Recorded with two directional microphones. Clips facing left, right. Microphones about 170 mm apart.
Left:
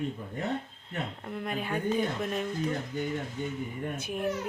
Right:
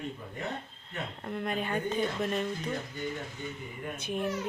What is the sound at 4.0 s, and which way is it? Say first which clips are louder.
Speech: even; 5° left (ahead or behind).